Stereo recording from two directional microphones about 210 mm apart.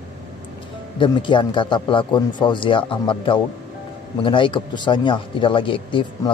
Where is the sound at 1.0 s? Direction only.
25° left (ahead or behind).